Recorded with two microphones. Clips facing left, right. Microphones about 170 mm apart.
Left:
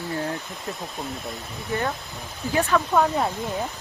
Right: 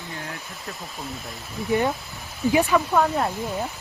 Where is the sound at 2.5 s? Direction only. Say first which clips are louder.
Even; 10° right (ahead or behind).